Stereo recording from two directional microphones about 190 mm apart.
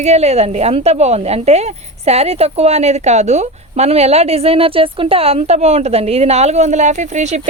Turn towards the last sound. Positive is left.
turn(degrees=-35)  # may be behind; listen again after turning